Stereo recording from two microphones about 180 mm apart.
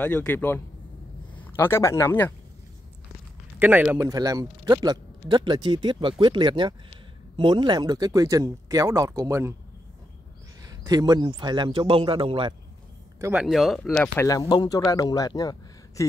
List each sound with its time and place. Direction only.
0.0 s a man's voice: 10° left (ahead or behind)
3.5 s a man's voice: 10° right (ahead or behind)
10.6 s a man's voice: 20° right (ahead or behind)
13.4 s speech: centre (ahead or behind)
14.2 s a man's voice: 20° left (ahead or behind)